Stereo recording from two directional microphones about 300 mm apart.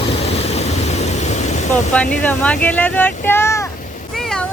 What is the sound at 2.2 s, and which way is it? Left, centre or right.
Speech, centre.